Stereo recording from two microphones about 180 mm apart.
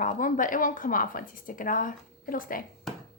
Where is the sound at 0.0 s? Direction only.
50° left (ahead or behind).